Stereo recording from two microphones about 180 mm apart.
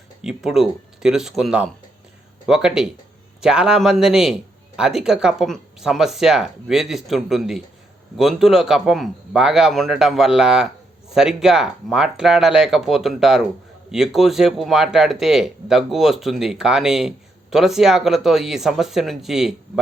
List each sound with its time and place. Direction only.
0.2 s speech: 5° right (ahead or behind)